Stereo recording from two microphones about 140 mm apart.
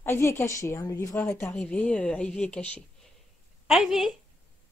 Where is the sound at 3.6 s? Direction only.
Centre (ahead or behind).